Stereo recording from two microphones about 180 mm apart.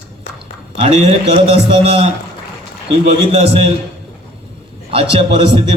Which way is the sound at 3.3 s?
35° right (ahead or behind).